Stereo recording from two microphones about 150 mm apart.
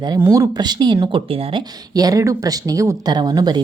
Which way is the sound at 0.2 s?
20° right (ahead or behind).